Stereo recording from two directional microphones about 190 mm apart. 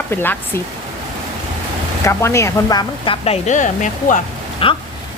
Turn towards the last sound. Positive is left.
turn(degrees=30)  # may be behind; listen again after turning